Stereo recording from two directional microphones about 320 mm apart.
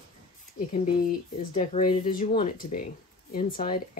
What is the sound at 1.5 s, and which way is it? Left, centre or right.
Speech, left.